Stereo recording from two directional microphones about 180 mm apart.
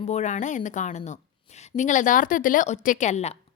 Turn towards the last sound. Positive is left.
turn(degrees=40)  # may be behind; listen again after turning